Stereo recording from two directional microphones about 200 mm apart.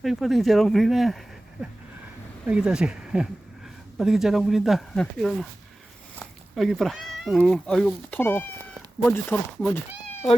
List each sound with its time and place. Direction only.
0.0 s speech: centre (ahead or behind)
2.5 s speech: 5° right (ahead or behind)